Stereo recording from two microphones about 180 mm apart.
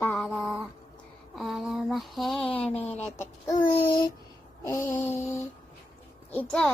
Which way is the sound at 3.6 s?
25° left (ahead or behind).